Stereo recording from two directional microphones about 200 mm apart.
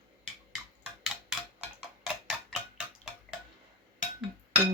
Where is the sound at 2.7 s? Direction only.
5° right (ahead or behind).